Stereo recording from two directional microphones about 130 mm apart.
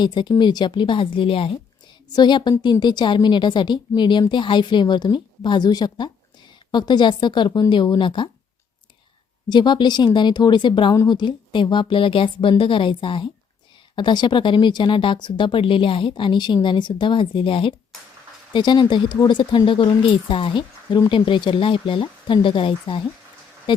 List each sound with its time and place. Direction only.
0.0 s speech: 35° left (ahead or behind)
9.5 s speech: 35° left (ahead or behind)